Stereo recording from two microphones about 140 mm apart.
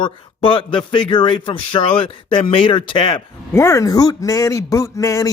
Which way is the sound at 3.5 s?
20° left (ahead or behind).